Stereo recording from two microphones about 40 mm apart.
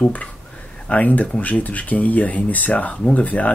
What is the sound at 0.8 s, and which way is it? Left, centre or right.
Speech, left.